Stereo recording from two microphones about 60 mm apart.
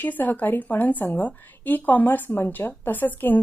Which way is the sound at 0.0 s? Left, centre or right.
Left.